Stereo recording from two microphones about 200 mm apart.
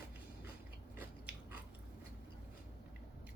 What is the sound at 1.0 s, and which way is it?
Biting, 10° right (ahead or behind).